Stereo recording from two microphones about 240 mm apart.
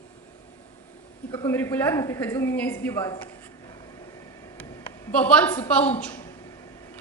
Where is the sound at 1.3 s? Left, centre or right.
Centre.